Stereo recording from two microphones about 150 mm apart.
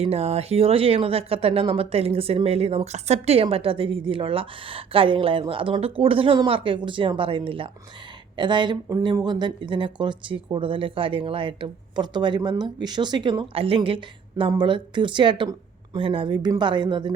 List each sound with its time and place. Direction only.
0.0 s speech: 45° right (ahead or behind)